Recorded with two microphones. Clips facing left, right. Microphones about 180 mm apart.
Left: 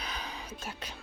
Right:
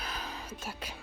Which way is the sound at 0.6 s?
10° right (ahead or behind).